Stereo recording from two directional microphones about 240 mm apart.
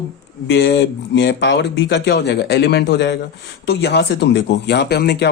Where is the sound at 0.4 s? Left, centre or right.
Left.